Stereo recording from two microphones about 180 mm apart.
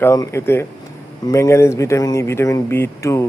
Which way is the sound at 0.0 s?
15° left (ahead or behind).